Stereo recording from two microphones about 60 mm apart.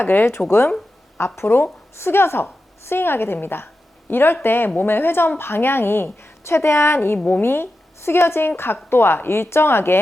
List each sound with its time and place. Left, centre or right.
0.0 s a woman's voice: left